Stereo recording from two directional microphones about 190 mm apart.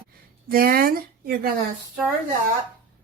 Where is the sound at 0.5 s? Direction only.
50° right (ahead or behind).